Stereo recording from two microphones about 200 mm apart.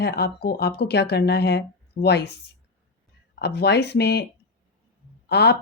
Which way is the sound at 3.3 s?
55° left (ahead or behind).